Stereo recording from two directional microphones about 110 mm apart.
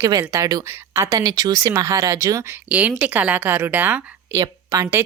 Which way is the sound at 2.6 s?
10° right (ahead or behind).